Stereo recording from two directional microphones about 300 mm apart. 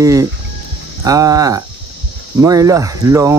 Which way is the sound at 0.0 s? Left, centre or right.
Centre.